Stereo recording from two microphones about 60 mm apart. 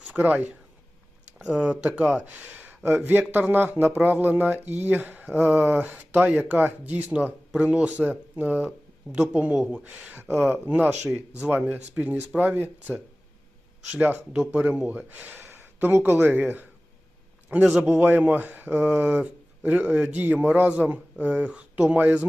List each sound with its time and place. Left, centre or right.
0.0 s a man's voice: right
11.1 s a man's voice: centre
18.0 s a man's voice: right